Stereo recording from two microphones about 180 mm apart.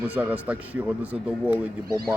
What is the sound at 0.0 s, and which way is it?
A man's voice, 10° right (ahead or behind).